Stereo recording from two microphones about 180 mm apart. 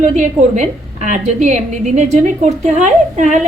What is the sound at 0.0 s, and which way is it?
A woman's voice, 45° right (ahead or behind).